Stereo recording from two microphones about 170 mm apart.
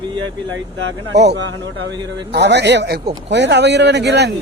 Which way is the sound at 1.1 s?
85° right.